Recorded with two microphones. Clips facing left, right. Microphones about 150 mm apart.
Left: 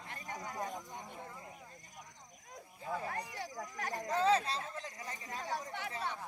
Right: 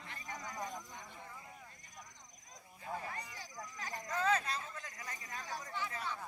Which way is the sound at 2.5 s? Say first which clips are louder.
Left 3 dB; 60° left (ahead or behind).